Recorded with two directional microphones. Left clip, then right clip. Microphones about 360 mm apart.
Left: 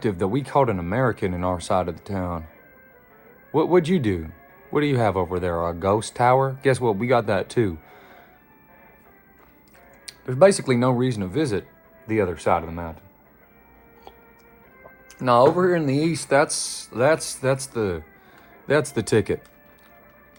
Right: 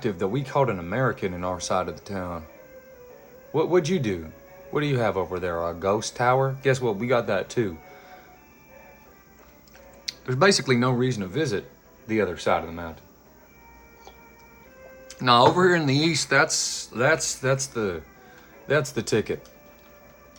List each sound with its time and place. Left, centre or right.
0.0 s speech: centre
3.5 s speech: centre
10.1 s speech: centre
15.1 s speech: centre